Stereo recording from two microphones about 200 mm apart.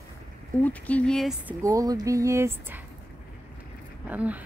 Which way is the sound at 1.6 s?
15° right (ahead or behind).